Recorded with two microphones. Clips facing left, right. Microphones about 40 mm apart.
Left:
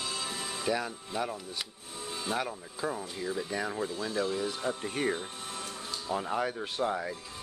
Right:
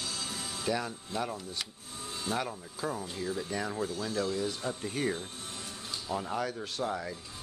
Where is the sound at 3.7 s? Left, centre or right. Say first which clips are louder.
Left 1 dB; left.